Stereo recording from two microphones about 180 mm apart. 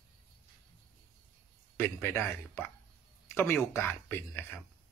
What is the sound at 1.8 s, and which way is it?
Speech, 10° left (ahead or behind).